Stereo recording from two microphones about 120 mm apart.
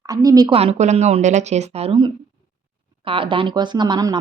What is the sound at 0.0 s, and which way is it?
Speech, 30° right (ahead or behind).